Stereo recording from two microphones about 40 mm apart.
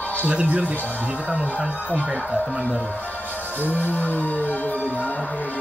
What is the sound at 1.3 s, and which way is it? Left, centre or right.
Speech, right.